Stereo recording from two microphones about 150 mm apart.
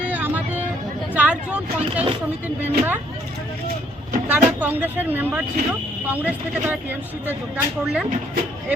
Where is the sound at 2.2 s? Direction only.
10° right (ahead or behind).